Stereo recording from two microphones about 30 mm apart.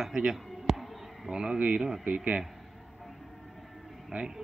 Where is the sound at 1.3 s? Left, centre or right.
Right.